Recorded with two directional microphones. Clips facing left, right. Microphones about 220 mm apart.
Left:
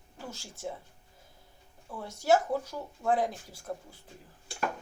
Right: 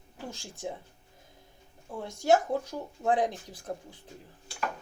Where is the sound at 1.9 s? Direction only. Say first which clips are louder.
Right 1 dB; 15° right (ahead or behind).